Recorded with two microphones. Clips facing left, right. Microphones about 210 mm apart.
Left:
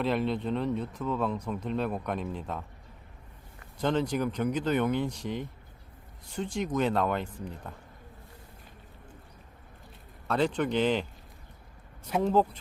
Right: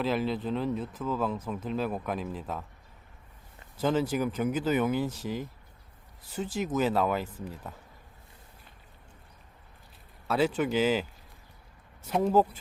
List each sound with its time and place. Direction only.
0.0 s speech: centre (ahead or behind)
3.8 s speech: 5° right (ahead or behind)
10.2 s speech: 5° right (ahead or behind)
12.2 s speech: 5° right (ahead or behind)